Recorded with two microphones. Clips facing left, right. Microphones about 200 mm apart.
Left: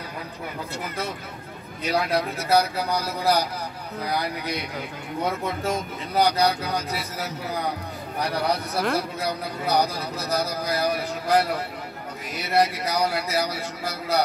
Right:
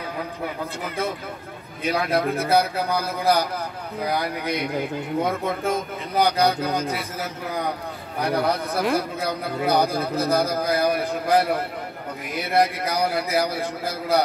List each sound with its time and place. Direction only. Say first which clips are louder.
1.9 s a man's voice: right 2 dB; 55° right (ahead or behind)